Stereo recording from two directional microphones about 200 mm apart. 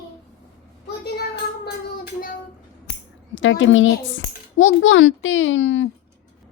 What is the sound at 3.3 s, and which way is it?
A woman's voice, 70° left (ahead or behind).